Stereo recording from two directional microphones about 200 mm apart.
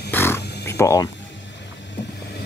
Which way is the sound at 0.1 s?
10° left (ahead or behind).